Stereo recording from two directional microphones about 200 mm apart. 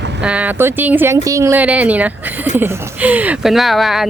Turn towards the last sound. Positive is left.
turn(degrees=0)  # may be behind; listen again after turning